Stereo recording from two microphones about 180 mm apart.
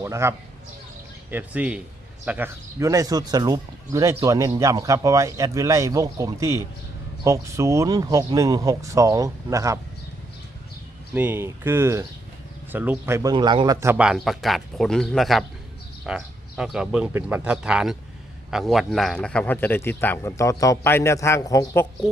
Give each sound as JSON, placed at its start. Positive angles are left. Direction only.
{"t": 0.0, "sound": "speech", "side_deg": -15}
{"t": 11.1, "sound": "speech", "side_deg": -10}
{"t": 13.3, "sound": "a man's voice", "side_deg": -25}
{"t": 13.8, "sound": "a man's voice", "side_deg": -5}